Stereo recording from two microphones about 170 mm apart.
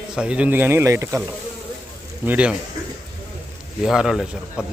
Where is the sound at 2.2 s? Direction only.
10° right (ahead or behind).